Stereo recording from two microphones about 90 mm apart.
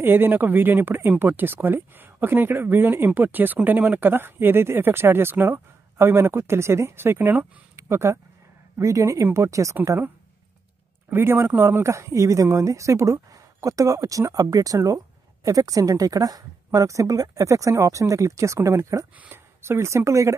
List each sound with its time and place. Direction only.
0.0 s speech: 25° right (ahead or behind)
11.1 s speech: 25° right (ahead or behind)
19.1 s speech: 20° right (ahead or behind)